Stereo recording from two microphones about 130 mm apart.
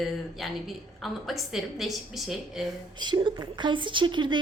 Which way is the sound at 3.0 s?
35° right (ahead or behind).